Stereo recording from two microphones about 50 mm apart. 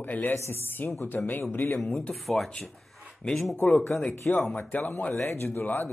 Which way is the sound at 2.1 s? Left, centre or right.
Centre.